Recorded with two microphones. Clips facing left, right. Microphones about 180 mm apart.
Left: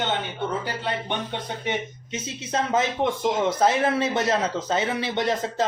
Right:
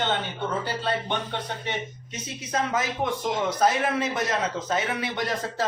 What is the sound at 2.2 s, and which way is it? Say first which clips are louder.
Speech: left 1 dB; 25° left (ahead or behind).